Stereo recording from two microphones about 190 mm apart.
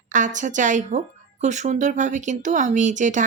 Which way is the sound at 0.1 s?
40° right (ahead or behind).